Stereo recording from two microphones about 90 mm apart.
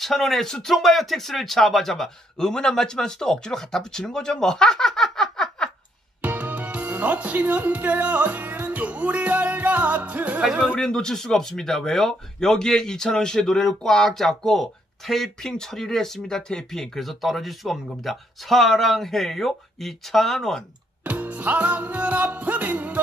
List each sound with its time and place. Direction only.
0.0 s a man's voice: 5° left (ahead or behind)
6.2 s music: 20° right (ahead or behind)
10.8 s a man's voice: 5° left (ahead or behind)
21.0 s music: 15° right (ahead or behind)